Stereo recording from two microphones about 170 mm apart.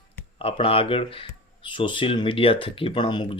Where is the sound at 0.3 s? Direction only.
30° left (ahead or behind).